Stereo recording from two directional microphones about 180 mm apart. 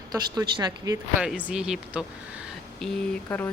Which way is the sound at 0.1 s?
20° right (ahead or behind).